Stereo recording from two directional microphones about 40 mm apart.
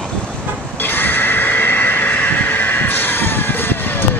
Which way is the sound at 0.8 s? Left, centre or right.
Left.